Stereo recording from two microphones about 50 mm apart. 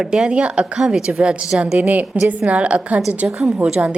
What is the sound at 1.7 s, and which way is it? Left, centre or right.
A woman's voice, right.